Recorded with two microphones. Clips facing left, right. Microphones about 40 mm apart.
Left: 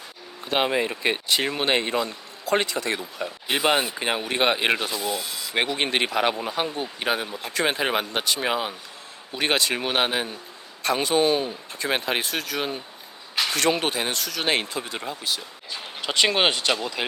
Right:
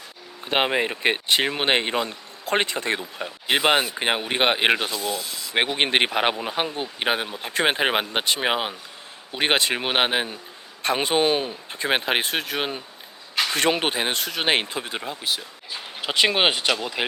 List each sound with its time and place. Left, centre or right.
0.4 s speech: right
15.4 s speech: centre